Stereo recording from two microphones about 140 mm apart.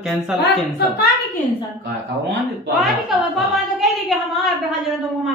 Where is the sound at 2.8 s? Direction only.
Centre (ahead or behind).